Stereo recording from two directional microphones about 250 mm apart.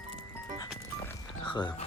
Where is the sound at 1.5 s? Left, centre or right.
Centre.